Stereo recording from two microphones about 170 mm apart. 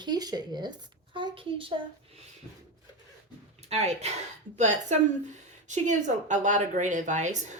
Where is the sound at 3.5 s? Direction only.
40° right (ahead or behind).